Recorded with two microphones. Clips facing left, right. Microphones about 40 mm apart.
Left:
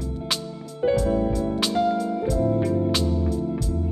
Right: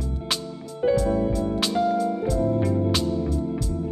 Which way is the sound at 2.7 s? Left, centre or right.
Centre.